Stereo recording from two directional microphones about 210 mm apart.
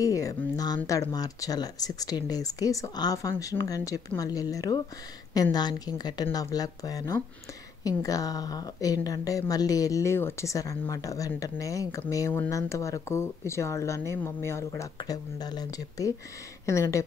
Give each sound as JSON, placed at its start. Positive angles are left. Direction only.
{"t": 0.0, "sound": "a woman's voice", "side_deg": 15}